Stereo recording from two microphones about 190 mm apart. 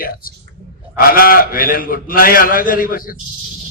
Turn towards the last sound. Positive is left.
turn(degrees=50)  # may be behind; listen again after turning